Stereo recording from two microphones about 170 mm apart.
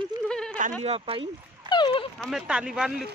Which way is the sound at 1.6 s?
25° left (ahead or behind).